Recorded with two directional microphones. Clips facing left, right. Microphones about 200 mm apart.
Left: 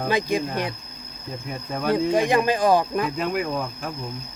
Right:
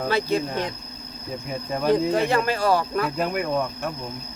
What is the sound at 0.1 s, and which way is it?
Speech, 15° left (ahead or behind).